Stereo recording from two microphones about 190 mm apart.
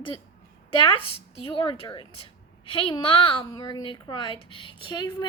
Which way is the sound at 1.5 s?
25° left (ahead or behind).